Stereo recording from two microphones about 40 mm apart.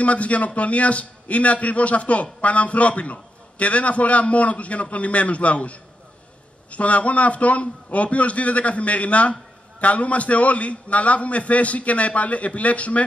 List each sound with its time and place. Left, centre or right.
0.0 s a man's voice: left